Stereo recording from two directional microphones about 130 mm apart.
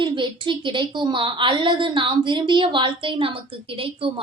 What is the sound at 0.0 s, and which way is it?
A woman's voice, 40° right (ahead or behind).